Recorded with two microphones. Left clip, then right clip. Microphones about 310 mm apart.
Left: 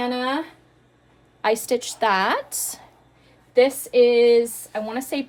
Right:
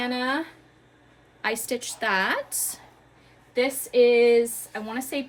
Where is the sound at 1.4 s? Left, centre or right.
Centre.